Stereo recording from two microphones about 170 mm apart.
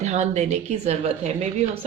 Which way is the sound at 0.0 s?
40° right (ahead or behind).